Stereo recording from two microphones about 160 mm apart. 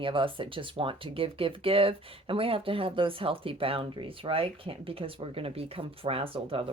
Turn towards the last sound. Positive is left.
turn(degrees=-35)  # may be behind; listen again after turning